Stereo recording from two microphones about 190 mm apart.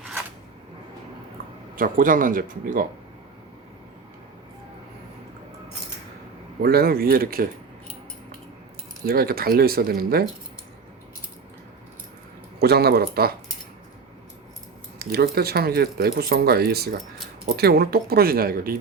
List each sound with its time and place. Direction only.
1.7 s speech: 45° right (ahead or behind)
6.6 s speech: 55° right (ahead or behind)
9.0 s speech: 50° right (ahead or behind)
12.5 s speech: 55° right (ahead or behind)
14.9 s speech: 55° right (ahead or behind)